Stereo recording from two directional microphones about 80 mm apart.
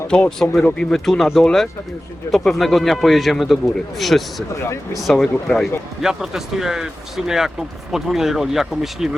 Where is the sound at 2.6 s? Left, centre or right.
Centre.